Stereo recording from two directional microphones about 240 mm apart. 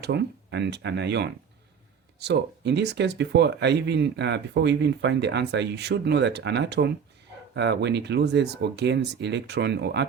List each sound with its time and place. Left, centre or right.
0.0 s speech: right